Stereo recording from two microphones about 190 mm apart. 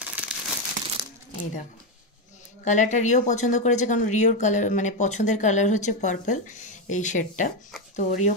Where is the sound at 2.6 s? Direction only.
40° left (ahead or behind).